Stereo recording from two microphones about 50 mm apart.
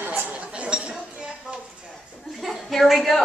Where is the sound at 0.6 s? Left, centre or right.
Right.